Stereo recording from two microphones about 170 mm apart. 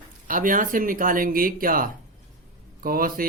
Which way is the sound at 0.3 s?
50° right (ahead or behind).